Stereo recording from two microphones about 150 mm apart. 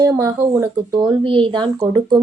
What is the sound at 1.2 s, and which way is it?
Speech, 35° right (ahead or behind).